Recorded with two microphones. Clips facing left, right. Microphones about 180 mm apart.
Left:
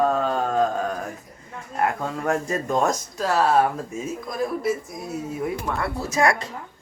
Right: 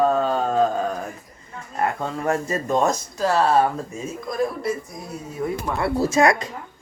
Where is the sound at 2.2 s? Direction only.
Centre (ahead or behind).